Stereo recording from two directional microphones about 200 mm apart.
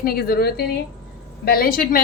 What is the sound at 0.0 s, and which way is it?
Speech, 50° left (ahead or behind).